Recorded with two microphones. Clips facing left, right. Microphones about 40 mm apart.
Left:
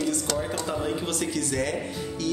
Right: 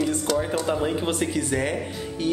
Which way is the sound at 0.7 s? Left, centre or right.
Right.